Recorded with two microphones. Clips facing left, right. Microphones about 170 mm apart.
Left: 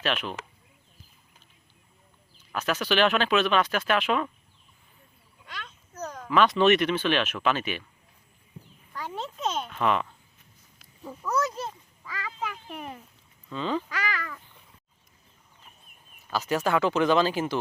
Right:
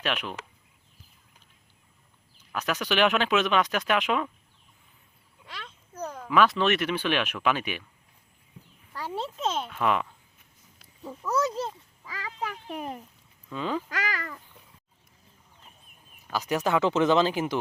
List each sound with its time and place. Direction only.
0.0 s speech: 15° right (ahead or behind)
2.5 s speech: 15° right (ahead or behind)
5.9 s speech: 10° right (ahead or behind)
9.0 s speech: 30° right (ahead or behind)
9.6 s a child's voice: 5° right (ahead or behind)
12.7 s speech: 35° right (ahead or behind)
13.5 s speech: 10° right (ahead or behind)
13.9 s a child's voice: 40° right (ahead or behind)
16.3 s speech: 15° right (ahead or behind)